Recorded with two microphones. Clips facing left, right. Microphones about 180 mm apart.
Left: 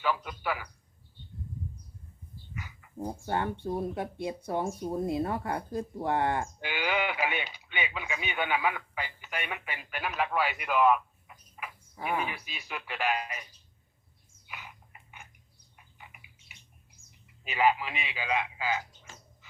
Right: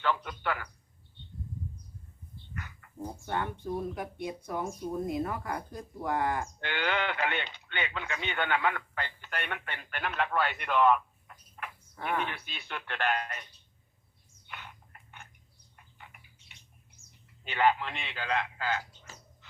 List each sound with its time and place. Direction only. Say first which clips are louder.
0.0 s a sound: even; 5° left (ahead or behind)
2.6 s dog: even; 5° left (ahead or behind)
3.0 s speech: left 3 dB; 30° left (ahead or behind)
6.6 s speech: left 1 dB; 10° left (ahead or behind)
14.4 s a sound: even; 5° left (ahead or behind)
15.7 s bird: even; 5° left (ahead or behind)
17.4 s a man's voice: even; 5° left (ahead or behind)